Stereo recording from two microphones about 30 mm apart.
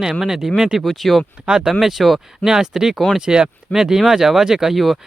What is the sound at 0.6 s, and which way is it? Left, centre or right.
Speech, right.